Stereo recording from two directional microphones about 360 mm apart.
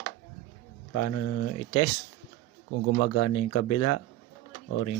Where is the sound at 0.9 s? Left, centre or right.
Left.